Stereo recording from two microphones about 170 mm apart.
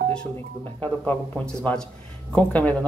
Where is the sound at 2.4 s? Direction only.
10° left (ahead or behind).